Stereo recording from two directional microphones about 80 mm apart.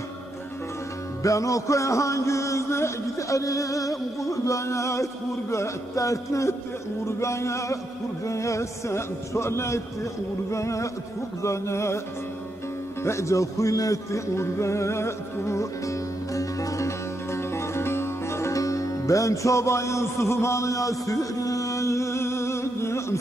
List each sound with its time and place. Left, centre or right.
1.2 s music: left
13.0 s music: left